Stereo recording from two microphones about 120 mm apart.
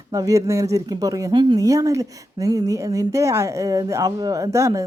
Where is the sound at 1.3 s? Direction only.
40° right (ahead or behind).